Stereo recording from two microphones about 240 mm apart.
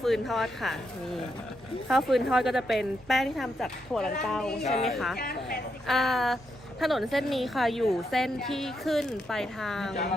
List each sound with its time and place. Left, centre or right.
0.0 s a woman's voice: centre
1.9 s a woman's voice: centre
5.1 s speech: left
5.9 s a woman's voice: centre